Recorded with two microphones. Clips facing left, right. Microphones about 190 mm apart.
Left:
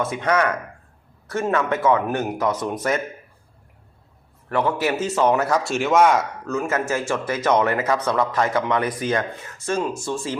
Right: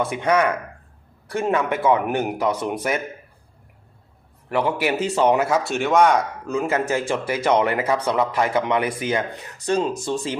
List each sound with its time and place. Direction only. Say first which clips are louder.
0.0 s speech: right 1 dB; 10° right (ahead or behind)
4.4 s speech: even; 15° right (ahead or behind)
5.6 s speech: left 2 dB; centre (ahead or behind)
6.4 s a man's voice: right 1 dB; 15° right (ahead or behind)